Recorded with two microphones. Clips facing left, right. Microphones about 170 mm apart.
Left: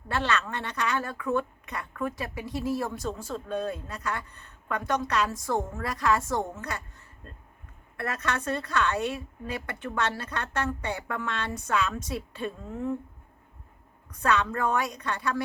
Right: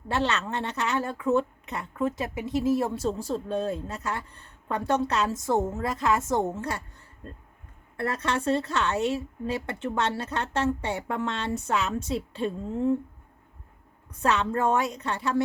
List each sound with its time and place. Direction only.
0.1 s a woman's voice: 25° right (ahead or behind)
7.9 s a woman's voice: 30° right (ahead or behind)
14.2 s a woman's voice: 25° right (ahead or behind)